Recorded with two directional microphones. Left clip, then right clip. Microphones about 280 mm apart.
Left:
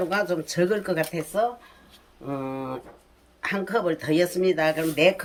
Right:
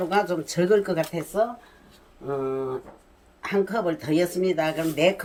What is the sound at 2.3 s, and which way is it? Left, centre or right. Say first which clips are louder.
Speech: right 4 dB; centre.